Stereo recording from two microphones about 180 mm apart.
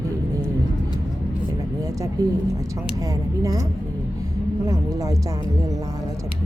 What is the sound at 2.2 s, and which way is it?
Speech, 20° right (ahead or behind).